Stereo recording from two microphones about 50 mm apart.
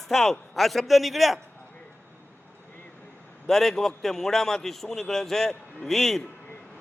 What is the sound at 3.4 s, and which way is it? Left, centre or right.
A man's voice, centre.